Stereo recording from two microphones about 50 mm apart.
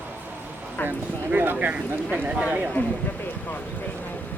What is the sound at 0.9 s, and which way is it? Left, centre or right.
Speech, right.